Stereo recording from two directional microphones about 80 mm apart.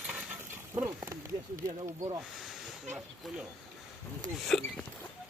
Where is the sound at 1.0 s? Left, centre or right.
Right.